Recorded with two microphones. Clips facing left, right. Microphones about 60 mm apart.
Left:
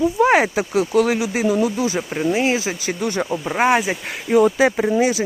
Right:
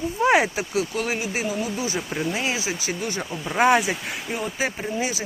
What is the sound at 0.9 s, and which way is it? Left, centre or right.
Speech, left.